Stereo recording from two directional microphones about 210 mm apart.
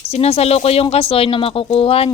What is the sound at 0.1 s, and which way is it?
Speech, 30° left (ahead or behind).